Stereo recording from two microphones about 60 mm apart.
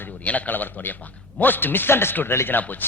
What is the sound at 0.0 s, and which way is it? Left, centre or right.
A man's voice, left.